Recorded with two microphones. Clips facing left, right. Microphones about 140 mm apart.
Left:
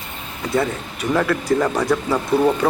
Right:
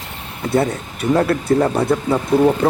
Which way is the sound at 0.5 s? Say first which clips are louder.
Right 3 dB; 30° right (ahead or behind).